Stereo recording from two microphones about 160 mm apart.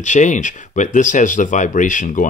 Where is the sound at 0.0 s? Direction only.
50° left (ahead or behind).